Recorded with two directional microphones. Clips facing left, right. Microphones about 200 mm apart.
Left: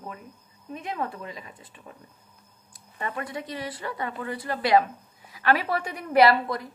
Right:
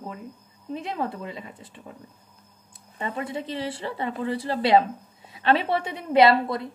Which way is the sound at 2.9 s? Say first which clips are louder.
Right 3 dB; 25° right (ahead or behind).